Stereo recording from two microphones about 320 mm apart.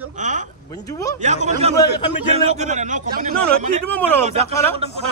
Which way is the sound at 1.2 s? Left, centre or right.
Right.